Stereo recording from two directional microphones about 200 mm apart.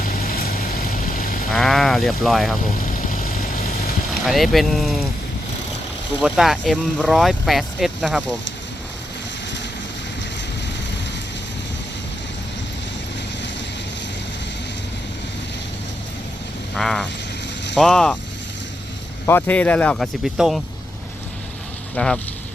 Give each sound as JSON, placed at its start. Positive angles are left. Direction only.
{"t": 0.0, "sound": "vehicle", "side_deg": 45}
{"t": 1.5, "sound": "speech", "side_deg": 0}
{"t": 2.8, "sound": "vehicle", "side_deg": 45}
{"t": 4.3, "sound": "speech", "side_deg": 0}
{"t": 6.1, "sound": "speech", "side_deg": 0}
{"t": 16.7, "sound": "speech", "side_deg": 0}
{"t": 19.2, "sound": "speech", "side_deg": 10}
{"t": 21.9, "sound": "speech", "side_deg": 5}